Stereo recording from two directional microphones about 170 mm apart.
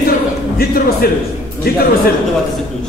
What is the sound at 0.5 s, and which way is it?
Speech, 60° left (ahead or behind).